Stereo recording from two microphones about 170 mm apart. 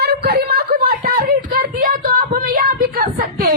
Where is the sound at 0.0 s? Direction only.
70° right (ahead or behind).